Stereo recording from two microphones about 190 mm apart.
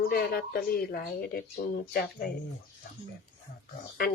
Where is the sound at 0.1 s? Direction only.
50° left (ahead or behind).